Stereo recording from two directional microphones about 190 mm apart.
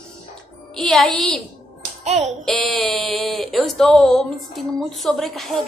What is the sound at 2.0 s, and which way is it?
Music, 35° right (ahead or behind).